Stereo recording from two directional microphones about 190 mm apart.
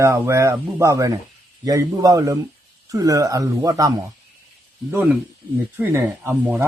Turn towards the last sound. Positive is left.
turn(degrees=-15)  # may be behind; listen again after turning